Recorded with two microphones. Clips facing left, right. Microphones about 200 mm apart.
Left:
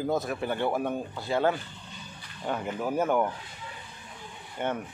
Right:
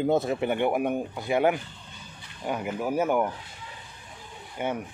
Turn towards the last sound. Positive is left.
turn(degrees=-5)  # may be behind; listen again after turning